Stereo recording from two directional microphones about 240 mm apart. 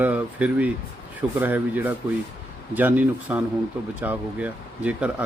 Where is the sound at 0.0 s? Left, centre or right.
Centre.